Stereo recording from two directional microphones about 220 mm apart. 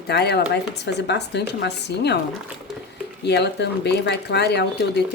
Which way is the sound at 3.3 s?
50° left (ahead or behind).